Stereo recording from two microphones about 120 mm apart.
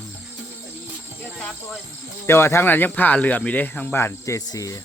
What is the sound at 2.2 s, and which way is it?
Speech, 20° left (ahead or behind).